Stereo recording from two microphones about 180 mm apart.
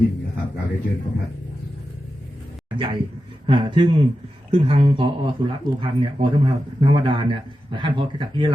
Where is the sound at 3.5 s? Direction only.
25° right (ahead or behind).